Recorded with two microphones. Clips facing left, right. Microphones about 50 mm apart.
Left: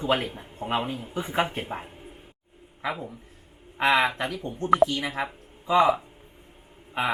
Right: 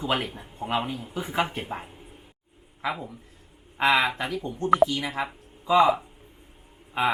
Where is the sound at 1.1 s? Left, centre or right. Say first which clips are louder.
Left 1 dB; centre.